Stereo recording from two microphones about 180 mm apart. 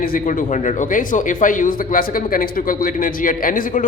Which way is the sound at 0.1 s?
45° left (ahead or behind).